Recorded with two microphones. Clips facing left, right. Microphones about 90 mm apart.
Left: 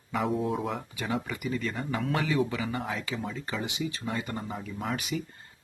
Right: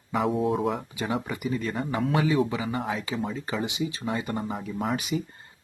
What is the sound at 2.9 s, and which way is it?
Speech, 20° right (ahead or behind).